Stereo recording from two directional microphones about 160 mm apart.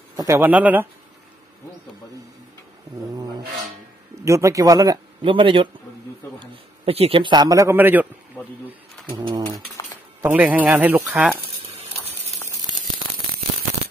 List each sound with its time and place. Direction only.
0.1 s speech: 15° right (ahead or behind)
4.1 s speech: 20° right (ahead or behind)
5.2 s a man's voice: 30° right (ahead or behind); by 8.1 s 10° right (ahead or behind)
9.1 s speech: 25° right (ahead or behind)
10.2 s speech: 10° right (ahead or behind)